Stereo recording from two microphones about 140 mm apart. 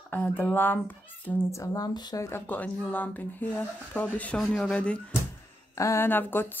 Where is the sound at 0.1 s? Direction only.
15° left (ahead or behind).